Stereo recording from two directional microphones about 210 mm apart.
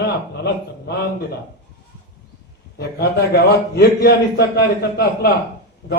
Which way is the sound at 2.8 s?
50° left (ahead or behind).